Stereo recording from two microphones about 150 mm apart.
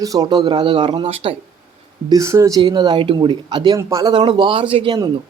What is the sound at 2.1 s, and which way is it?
Speech, 20° right (ahead or behind).